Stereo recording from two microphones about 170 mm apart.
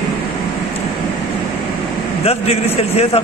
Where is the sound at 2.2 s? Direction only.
35° left (ahead or behind).